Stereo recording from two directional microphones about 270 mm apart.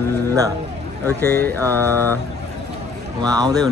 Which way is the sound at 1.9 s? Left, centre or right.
Centre.